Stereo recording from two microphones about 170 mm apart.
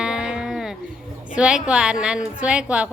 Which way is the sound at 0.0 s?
5° right (ahead or behind).